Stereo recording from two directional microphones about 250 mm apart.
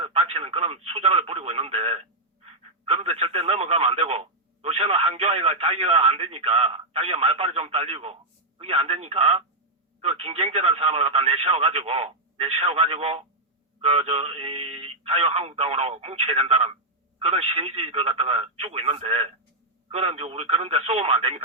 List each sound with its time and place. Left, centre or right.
0.0 s speech: right